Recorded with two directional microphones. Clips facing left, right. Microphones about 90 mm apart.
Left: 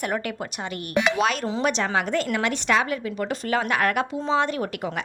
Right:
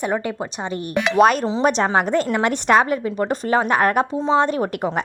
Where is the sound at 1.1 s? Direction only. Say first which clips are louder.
Right 8 dB; 45° right (ahead or behind).